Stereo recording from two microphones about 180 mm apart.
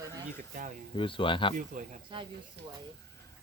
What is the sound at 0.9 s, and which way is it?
Speech, 30° left (ahead or behind).